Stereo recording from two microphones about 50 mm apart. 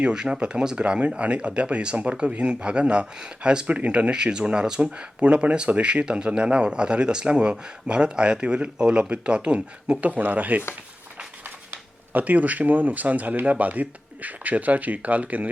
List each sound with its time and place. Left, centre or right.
0.0 s speech: centre
10.1 s speech: right